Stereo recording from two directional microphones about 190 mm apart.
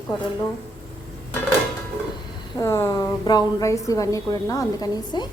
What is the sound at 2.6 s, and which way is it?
A woman's voice, 15° left (ahead or behind).